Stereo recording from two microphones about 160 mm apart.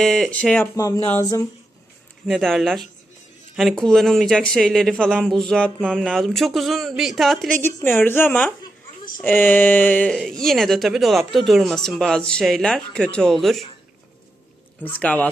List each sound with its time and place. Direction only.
0.0 s speech: centre (ahead or behind)
0.8 s speech: 20° left (ahead or behind)
2.2 s speech: centre (ahead or behind)
9.2 s a sound: 10° left (ahead or behind)
10.2 s speech: centre (ahead or behind)
14.8 s a sound: 10° left (ahead or behind)